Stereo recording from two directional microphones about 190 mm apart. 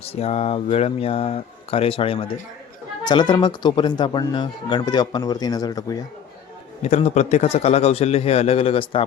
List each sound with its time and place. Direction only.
0.0 s speech: 30° left (ahead or behind)
6.8 s speech: 35° left (ahead or behind)